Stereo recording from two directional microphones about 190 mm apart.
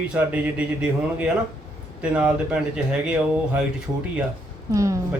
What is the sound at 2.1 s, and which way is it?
Speech, 5° right (ahead or behind).